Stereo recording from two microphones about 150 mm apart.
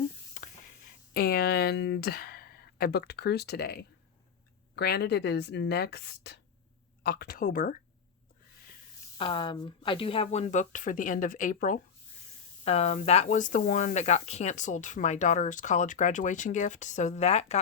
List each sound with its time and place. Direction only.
0.4 s a sound: 55° left (ahead or behind)
1.1 s speech: 90° left; by 7.8 s 70° left (ahead or behind)
9.1 s speech: 35° left (ahead or behind); by 11.8 s 60° left (ahead or behind)
12.6 s speech: 45° left (ahead or behind)